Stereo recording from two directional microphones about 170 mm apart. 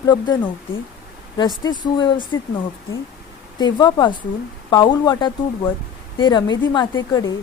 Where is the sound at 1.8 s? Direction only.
25° left (ahead or behind).